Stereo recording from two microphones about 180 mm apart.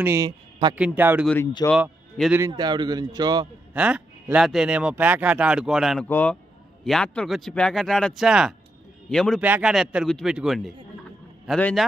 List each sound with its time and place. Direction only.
0.0 s speech: 15° right (ahead or behind)
1.2 s speech: 10° left (ahead or behind)
2.4 s a man's voice: 25° right (ahead or behind)
3.7 s speech: 5° right (ahead or behind)
6.0 s speech: 10° left (ahead or behind)